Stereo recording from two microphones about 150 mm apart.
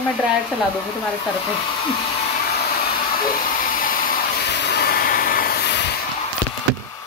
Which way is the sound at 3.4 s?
65° left (ahead or behind).